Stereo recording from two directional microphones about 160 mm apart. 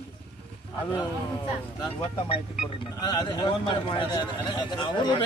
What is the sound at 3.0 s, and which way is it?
Speech, 25° left (ahead or behind).